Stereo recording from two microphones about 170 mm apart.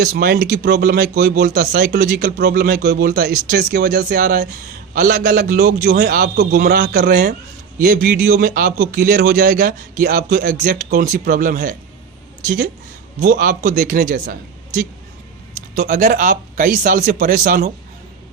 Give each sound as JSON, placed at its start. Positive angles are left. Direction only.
{"t": 0.0, "sound": "a man's voice", "side_deg": -60}
{"t": 13.2, "sound": "a man's voice", "side_deg": -50}